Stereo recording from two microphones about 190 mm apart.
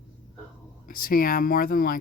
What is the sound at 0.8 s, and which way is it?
Speech, 50° left (ahead or behind).